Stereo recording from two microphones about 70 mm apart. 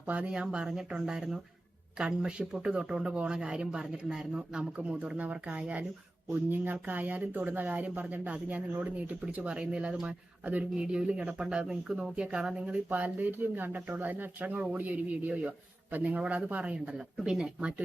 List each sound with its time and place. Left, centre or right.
0.1 s speech: right
0.3 s speech: centre